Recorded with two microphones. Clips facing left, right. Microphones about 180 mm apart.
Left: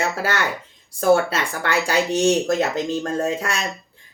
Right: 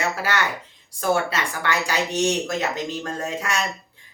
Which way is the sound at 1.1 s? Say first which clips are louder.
Left 5 dB; 45° left (ahead or behind).